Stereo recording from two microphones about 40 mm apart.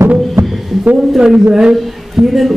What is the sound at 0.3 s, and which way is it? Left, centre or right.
Music, centre.